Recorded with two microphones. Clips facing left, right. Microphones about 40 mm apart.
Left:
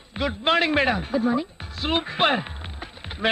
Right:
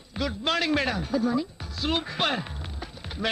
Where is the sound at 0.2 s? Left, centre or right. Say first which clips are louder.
Left 5 dB; left.